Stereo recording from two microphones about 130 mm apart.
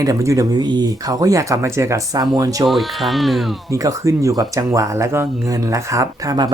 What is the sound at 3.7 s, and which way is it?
Speech, 25° right (ahead or behind).